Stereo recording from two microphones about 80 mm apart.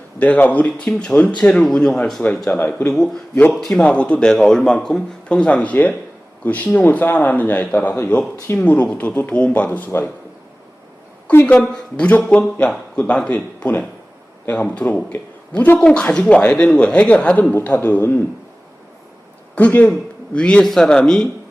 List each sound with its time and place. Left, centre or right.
0.2 s a man's voice: centre
2.5 s a man's voice: left
3.5 s a man's voice: centre
3.8 s a man's voice: centre
11.4 s a man's voice: centre
17.5 s a man's voice: left
19.5 s a man's voice: centre